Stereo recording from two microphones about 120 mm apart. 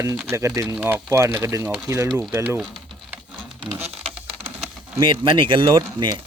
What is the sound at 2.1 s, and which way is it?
Speech, 5° right (ahead or behind).